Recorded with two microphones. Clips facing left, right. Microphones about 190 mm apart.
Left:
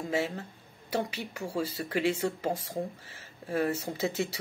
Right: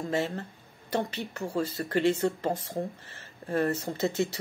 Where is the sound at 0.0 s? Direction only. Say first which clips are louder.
Right 1 dB; 5° left (ahead or behind).